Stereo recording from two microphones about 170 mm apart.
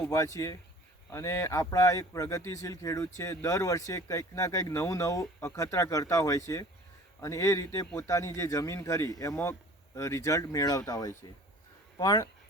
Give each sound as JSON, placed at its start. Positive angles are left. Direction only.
{"t": 0.1, "sound": "speech", "side_deg": 20}